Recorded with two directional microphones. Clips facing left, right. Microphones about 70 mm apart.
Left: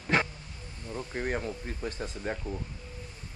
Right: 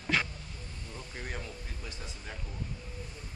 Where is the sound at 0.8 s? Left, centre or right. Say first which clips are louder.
Left 10 dB; left.